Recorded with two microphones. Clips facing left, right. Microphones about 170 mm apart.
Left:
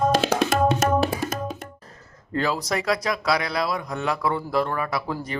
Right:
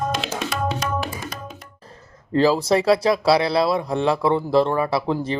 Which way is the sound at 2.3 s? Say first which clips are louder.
Right 8 dB; 30° right (ahead or behind).